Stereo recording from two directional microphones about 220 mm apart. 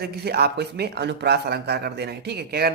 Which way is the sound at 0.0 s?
45° right (ahead or behind).